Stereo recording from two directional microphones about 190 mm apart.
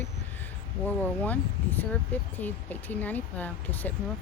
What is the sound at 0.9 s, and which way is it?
Speech, 10° left (ahead or behind).